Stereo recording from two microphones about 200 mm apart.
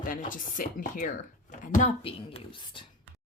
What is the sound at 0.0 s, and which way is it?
A woman's voice, 40° left (ahead or behind).